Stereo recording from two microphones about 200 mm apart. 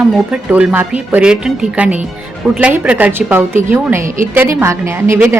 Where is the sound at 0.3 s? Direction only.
5° right (ahead or behind).